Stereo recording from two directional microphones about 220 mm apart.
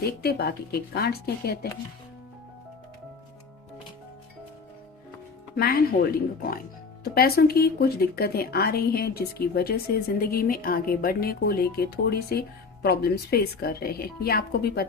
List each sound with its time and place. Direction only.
0.2 s speech: 45° left (ahead or behind)
5.5 s speech: 45° left (ahead or behind)